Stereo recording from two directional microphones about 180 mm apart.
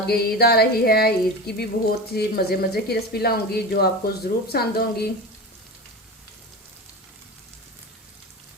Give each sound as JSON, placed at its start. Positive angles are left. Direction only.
{"t": 0.1, "sound": "speech", "side_deg": 60}